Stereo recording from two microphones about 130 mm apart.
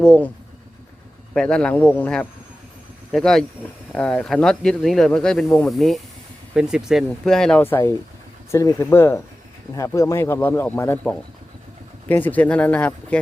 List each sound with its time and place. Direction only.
0.0 s speech: 10° left (ahead or behind)
1.3 s speech: 5° left (ahead or behind)
7.6 s speech: 15° left (ahead or behind)